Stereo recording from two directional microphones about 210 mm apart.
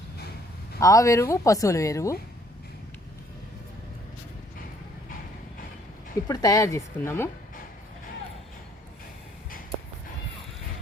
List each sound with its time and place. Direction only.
0.8 s speech: 15° left (ahead or behind)
6.2 s speech: 15° left (ahead or behind)